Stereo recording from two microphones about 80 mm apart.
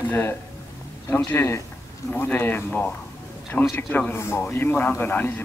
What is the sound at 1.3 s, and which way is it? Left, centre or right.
Speech, left.